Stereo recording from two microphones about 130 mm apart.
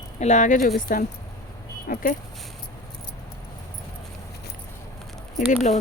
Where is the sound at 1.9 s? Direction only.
90° left.